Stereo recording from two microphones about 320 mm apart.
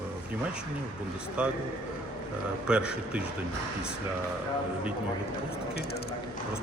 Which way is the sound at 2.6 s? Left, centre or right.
Centre.